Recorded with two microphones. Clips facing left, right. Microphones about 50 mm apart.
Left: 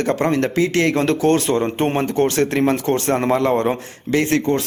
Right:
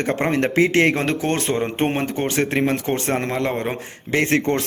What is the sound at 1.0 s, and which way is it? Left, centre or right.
Speech, centre.